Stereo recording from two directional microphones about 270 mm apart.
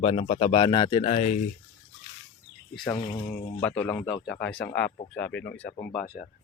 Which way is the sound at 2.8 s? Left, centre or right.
Centre.